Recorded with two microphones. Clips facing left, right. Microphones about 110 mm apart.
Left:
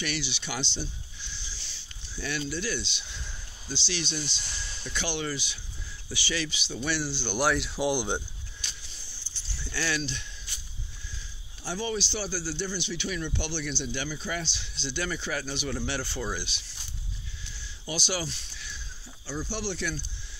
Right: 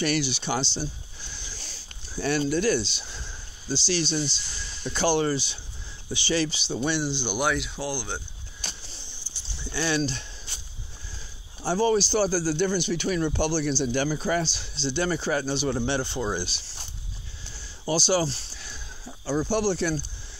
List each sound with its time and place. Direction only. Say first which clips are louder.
0.0 s speech: right 8 dB; 45° right (ahead or behind); by 7.3 s 20° right (ahead or behind)
7.3 s speech: left 2 dB; centre (ahead or behind)
7.8 s speech: left 4 dB; 20° left (ahead or behind)
8.5 s a sound: right 7 dB; 45° right (ahead or behind)
8.9 s a sound: right 4 dB; 20° right (ahead or behind)
9.9 s speech: right 7 dB; 35° right (ahead or behind)
11.6 s speech: right 9 dB; 40° right (ahead or behind)
16.4 s speech: right 4 dB; 35° right (ahead or behind)
17.5 s a sound: right 9 dB; 35° right (ahead or behind)